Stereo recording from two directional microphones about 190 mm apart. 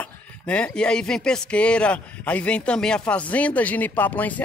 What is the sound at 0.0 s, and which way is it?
Speech, 5° left (ahead or behind).